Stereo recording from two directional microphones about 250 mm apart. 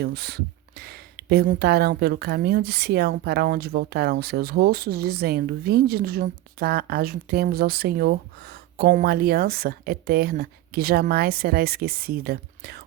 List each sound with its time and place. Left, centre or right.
0.0 s speech: right